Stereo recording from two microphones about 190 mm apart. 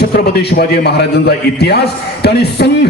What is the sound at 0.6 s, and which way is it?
A man's voice, 55° left (ahead or behind).